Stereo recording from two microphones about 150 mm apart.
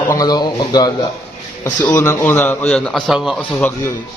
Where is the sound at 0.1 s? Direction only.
25° left (ahead or behind); by 3.4 s centre (ahead or behind).